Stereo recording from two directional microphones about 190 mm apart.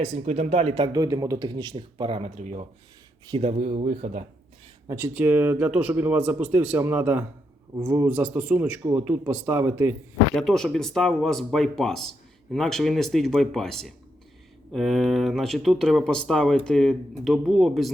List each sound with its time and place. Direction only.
0.0 s speech: 35° right (ahead or behind)
4.9 s speech: 15° right (ahead or behind)
10.3 s speech: centre (ahead or behind)